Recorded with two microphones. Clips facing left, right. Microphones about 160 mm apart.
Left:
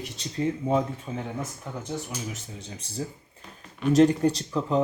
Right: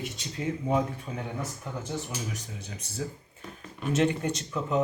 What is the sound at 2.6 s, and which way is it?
Speech, 30° left (ahead or behind).